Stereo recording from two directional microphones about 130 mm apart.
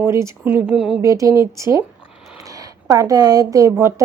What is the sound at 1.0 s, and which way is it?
A woman's voice, 25° right (ahead or behind).